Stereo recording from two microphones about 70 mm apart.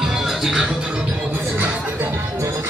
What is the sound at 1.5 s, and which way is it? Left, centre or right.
Music, right.